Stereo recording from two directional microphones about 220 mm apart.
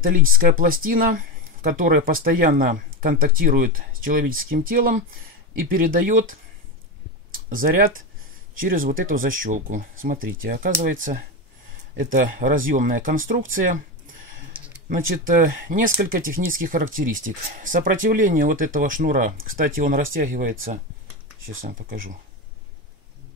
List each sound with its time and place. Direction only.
0.3 s speech: 40° right (ahead or behind)
7.6 s speech: 40° right (ahead or behind)
14.9 s speech: 40° right (ahead or behind)
21.6 s speech: 40° right (ahead or behind)